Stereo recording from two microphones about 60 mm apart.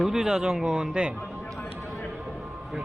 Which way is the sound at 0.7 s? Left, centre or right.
Centre.